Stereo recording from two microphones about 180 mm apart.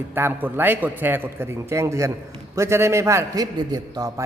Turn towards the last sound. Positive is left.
turn(degrees=-20)  # may be behind; listen again after turning